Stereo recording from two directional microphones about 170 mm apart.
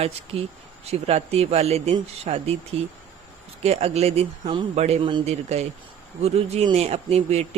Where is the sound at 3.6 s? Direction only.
35° right (ahead or behind).